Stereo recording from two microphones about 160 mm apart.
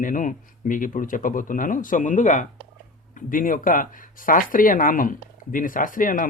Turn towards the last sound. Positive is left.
turn(degrees=55)  # may be behind; listen again after turning